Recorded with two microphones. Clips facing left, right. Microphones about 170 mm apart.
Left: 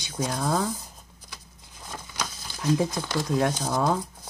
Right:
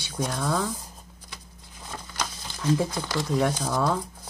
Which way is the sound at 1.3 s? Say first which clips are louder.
Right 1 dB; centre (ahead or behind).